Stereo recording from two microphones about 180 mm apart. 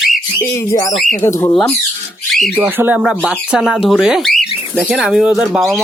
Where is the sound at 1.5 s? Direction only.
Centre (ahead or behind).